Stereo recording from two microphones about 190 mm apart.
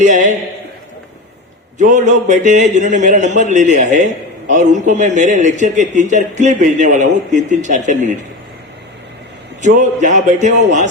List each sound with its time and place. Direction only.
0.0 s a sound: 40° right (ahead or behind)
1.8 s a man's voice: 40° right (ahead or behind)
9.6 s a man's voice: 40° right (ahead or behind)